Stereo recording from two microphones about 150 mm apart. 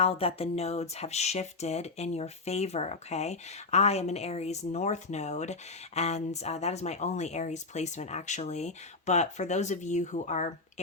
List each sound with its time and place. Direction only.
0.0 s speech: 40° left (ahead or behind)